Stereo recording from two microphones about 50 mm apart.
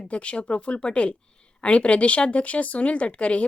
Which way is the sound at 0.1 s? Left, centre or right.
Left.